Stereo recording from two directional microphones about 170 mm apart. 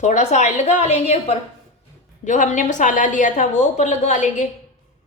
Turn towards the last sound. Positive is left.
turn(degrees=45)  # may be behind; listen again after turning